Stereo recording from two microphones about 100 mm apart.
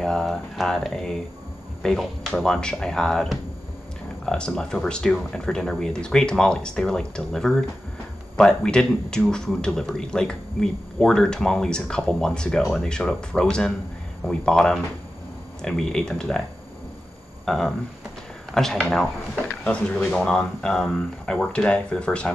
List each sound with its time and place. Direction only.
0.0 s speech: 5° left (ahead or behind)
17.5 s speech: 5° left (ahead or behind)